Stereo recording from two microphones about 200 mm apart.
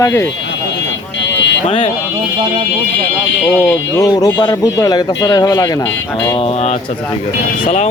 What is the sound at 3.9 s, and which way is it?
Speech, 15° left (ahead or behind).